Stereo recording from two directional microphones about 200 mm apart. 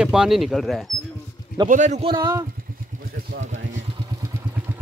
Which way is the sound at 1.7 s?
35° right (ahead or behind).